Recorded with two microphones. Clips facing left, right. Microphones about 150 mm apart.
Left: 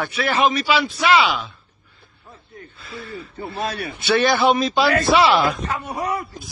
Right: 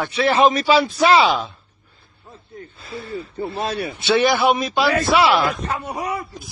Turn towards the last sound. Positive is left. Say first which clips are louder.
# even
turn(degrees=-15)  # may be behind; listen again after turning